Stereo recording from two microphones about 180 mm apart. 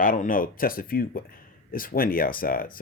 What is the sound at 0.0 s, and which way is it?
Speech, 50° left (ahead or behind).